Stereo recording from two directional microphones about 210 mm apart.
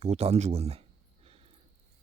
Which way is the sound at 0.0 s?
30° right (ahead or behind).